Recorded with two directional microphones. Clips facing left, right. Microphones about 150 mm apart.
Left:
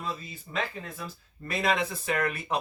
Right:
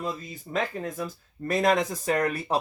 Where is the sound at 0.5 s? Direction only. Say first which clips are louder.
Right 5 dB; 40° right (ahead or behind).